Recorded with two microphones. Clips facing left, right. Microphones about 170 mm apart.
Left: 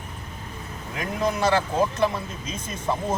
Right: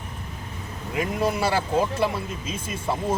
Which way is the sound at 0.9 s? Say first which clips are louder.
Right 1 dB; 10° right (ahead or behind).